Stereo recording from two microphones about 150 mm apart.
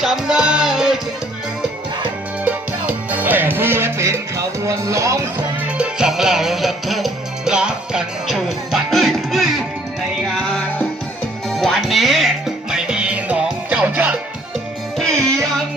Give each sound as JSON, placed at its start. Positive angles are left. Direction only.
{"t": 0.0, "sound": "music", "side_deg": -5}
{"t": 2.4, "sound": "music", "side_deg": -10}
{"t": 5.6, "sound": "music", "side_deg": -5}
{"t": 11.4, "sound": "music", "side_deg": 0}